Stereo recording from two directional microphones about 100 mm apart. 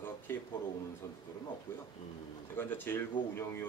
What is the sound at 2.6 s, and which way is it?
Speech, 20° left (ahead or behind).